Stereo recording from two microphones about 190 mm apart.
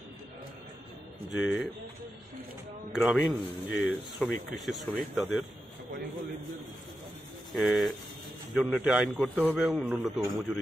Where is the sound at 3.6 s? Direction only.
85° left.